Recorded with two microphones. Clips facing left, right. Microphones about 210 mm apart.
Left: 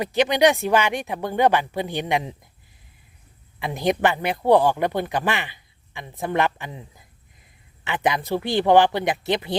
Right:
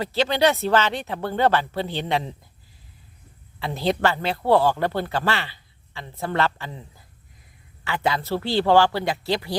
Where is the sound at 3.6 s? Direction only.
15° left (ahead or behind).